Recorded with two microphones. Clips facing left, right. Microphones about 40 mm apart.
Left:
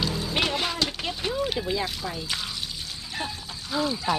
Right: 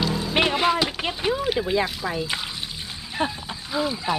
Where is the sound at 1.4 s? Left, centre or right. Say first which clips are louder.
Right 2 dB; centre.